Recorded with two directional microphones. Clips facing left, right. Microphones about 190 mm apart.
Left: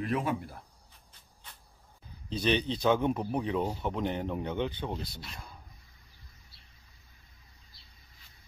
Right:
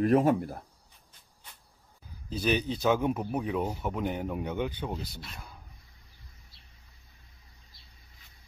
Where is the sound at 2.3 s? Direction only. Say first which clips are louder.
Even; 5° right (ahead or behind).